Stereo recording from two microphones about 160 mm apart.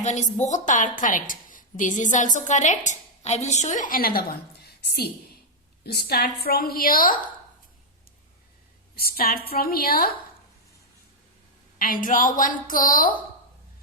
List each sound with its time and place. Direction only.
0.0 s a woman's voice: 45° left (ahead or behind); by 7.2 s 60° left (ahead or behind)
9.0 s a woman's voice: 70° left (ahead or behind)
11.8 s a woman's voice: 60° left (ahead or behind)